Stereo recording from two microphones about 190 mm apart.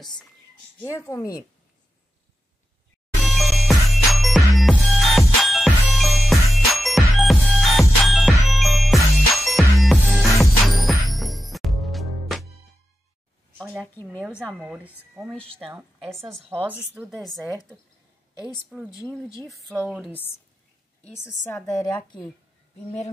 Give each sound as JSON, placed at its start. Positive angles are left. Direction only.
{"t": 0.0, "sound": "speech", "side_deg": 0}
{"t": 0.7, "sound": "speech", "side_deg": 15}
{"t": 3.2, "sound": "music", "side_deg": 0}
{"t": 13.6, "sound": "speech", "side_deg": -5}
{"t": 16.0, "sound": "speech", "side_deg": 0}
{"t": 19.0, "sound": "a woman's voice", "side_deg": 0}